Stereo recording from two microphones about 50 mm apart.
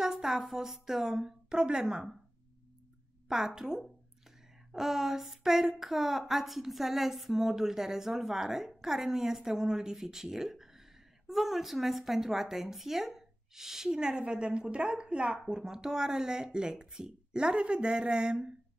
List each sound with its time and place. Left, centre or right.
0.0 s a woman's voice: centre
3.3 s a woman's voice: centre